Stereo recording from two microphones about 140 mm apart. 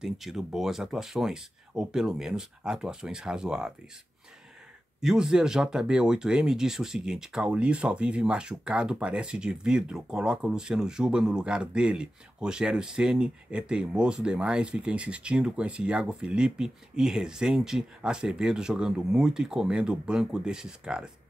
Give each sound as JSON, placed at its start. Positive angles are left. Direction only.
{"t": 0.0, "sound": "speech", "side_deg": 0}
{"t": 5.0, "sound": "speech", "side_deg": -5}